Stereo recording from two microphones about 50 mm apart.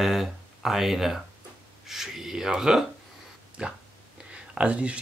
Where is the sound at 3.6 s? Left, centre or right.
Right.